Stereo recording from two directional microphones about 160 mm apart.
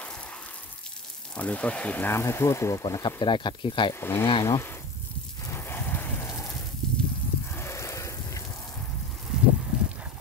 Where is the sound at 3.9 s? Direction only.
15° left (ahead or behind).